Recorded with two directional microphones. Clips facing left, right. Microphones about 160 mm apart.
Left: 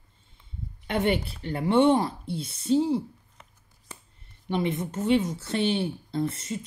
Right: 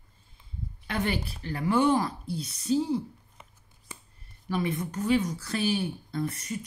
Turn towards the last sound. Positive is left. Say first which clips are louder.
# left 3 dB
turn(degrees=25)  # may be behind; listen again after turning